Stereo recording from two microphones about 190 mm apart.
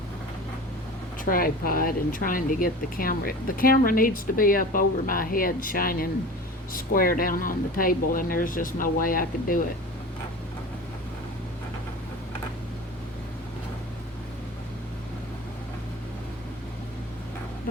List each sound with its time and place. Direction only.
1.2 s speech: 50° left (ahead or behind)